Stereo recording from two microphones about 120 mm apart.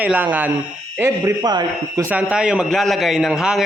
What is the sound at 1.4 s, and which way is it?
Speech, 35° right (ahead or behind).